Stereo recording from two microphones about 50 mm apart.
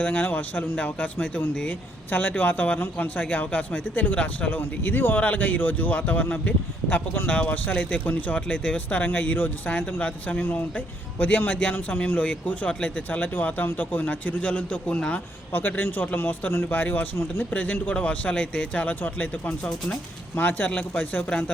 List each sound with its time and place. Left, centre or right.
0.0 s a man's voice: left
7.3 s a man's voice: left
15.5 s a man's voice: left
16.6 s a man's voice: left